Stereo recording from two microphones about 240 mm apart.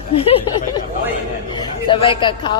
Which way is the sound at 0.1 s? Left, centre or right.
Left.